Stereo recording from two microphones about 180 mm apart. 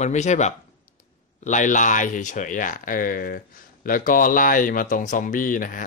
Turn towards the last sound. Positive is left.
turn(degrees=50)  # may be behind; listen again after turning